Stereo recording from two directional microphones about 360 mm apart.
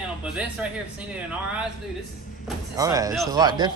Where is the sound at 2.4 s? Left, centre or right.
Centre.